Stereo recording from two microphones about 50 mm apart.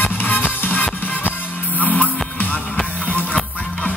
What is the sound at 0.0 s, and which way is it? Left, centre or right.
Music, left.